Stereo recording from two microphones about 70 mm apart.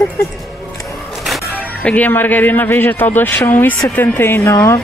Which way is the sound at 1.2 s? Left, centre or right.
Centre.